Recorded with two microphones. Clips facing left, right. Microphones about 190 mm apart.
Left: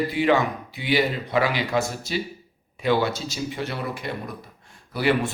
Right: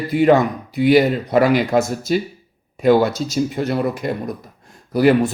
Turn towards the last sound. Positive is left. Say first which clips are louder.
# right 8 dB
turn(degrees=-45)  # may be behind; listen again after turning